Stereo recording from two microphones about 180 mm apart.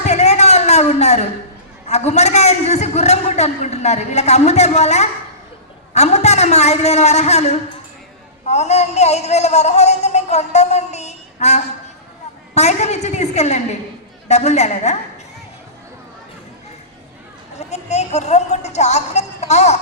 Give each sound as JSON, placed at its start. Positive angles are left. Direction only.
{"t": 0.0, "sound": "a sound", "side_deg": 40}
{"t": 1.9, "sound": "a man's voice", "side_deg": 40}
{"t": 17.6, "sound": "a man's voice", "side_deg": 40}